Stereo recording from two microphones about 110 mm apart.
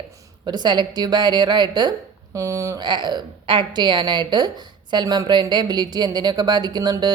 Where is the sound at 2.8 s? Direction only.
45° right (ahead or behind).